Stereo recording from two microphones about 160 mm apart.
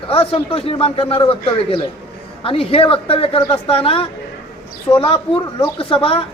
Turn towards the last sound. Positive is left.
turn(degrees=35)  # may be behind; listen again after turning